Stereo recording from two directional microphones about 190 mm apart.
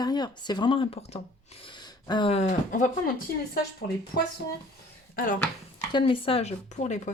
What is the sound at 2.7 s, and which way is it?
Speech, 40° left (ahead or behind).